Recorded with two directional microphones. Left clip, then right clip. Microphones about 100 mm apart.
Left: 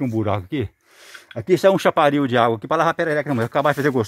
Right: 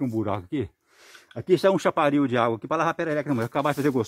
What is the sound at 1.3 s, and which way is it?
Speech, 25° left (ahead or behind).